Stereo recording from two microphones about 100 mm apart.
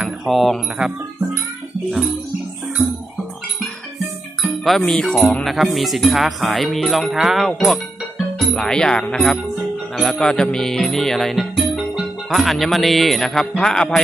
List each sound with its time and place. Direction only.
0.0 s speech: centre (ahead or behind)
4.4 s music: centre (ahead or behind)
8.5 s speech: 10° left (ahead or behind)
9.9 s music: 10° left (ahead or behind)